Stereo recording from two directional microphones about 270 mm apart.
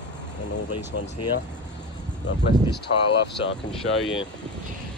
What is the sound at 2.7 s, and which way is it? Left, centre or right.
Speech, left.